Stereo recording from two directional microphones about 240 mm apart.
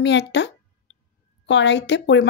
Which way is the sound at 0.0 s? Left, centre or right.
Left.